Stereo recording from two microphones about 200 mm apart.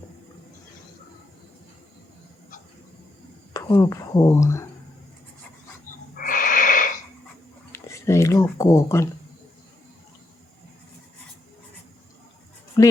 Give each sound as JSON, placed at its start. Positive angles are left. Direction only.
{"t": 3.5, "sound": "speech", "side_deg": 15}
{"t": 6.1, "sound": "wheeze", "side_deg": 40}
{"t": 7.7, "sound": "a sound", "side_deg": 15}
{"t": 12.8, "sound": "speech", "side_deg": 20}